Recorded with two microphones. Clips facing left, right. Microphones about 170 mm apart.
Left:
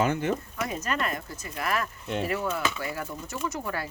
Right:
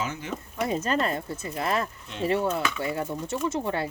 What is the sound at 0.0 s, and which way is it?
Speech, 60° left (ahead or behind).